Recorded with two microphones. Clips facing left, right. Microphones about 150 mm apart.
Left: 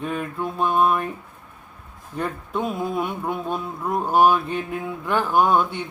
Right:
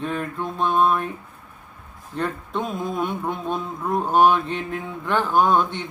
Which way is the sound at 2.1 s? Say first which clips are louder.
Even; 10° left (ahead or behind).